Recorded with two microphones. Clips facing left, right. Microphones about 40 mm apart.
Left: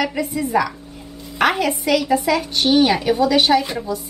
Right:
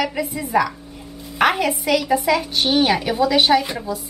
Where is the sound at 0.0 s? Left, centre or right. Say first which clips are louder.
Left 2 dB; centre.